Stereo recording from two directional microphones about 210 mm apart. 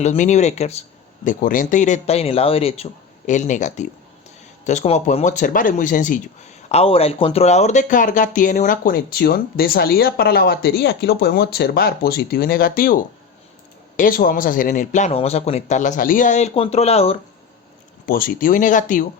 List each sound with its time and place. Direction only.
0.0 s speech: 35° left (ahead or behind)
6.7 s speech: 30° left (ahead or behind)
18.0 s speech: 45° left (ahead or behind)